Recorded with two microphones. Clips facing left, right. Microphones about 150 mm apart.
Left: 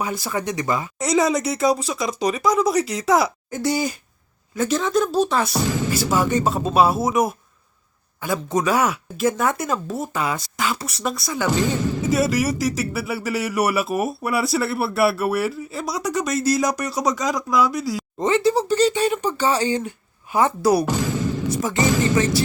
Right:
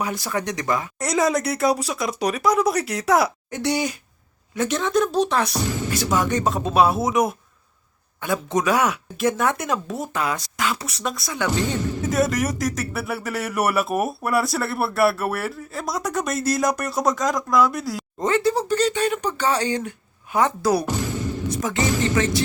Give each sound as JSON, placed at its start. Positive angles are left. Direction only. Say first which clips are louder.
{"t": 0.0, "sound": "speech", "louder": "left 1 dB", "side_deg": 0}
{"t": 5.5, "sound": "speech", "louder": "left 3 dB", "side_deg": 90}
{"t": 5.9, "sound": "speech", "louder": "left 1 dB", "side_deg": 5}
{"t": 11.8, "sound": "speech", "louder": "left 3 dB", "side_deg": 90}
{"t": 12.4, "sound": "a woman's voice", "louder": "left 2 dB", "side_deg": 5}
{"t": 20.8, "sound": "music", "louder": "left 3 dB", "side_deg": 90}
{"t": 22.1, "sound": "speech", "louder": "left 2 dB", "side_deg": 5}